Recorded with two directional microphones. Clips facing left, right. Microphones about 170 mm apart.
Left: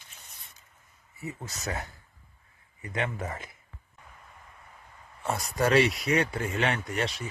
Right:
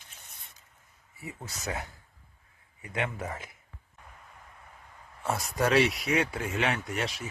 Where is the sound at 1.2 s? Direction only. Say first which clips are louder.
Left 2 dB; 10° right (ahead or behind).